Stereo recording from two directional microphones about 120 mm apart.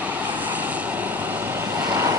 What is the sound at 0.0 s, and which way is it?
Vehicle, 15° right (ahead or behind).